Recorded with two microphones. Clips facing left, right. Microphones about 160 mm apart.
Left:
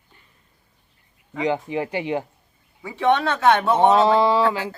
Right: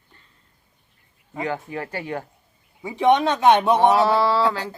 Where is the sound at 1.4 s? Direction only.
20° left (ahead or behind).